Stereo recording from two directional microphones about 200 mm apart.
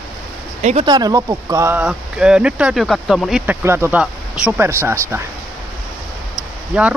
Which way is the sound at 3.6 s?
10° right (ahead or behind).